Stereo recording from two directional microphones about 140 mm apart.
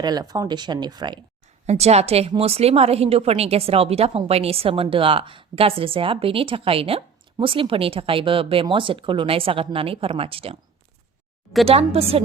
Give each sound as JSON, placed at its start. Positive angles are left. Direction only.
{"t": 0.0, "sound": "a woman's voice", "side_deg": -30}
{"t": 1.6, "sound": "a woman's voice", "side_deg": -50}
{"t": 11.6, "sound": "a woman's voice", "side_deg": -45}